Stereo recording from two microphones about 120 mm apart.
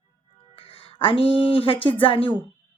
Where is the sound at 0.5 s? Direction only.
50° left (ahead or behind).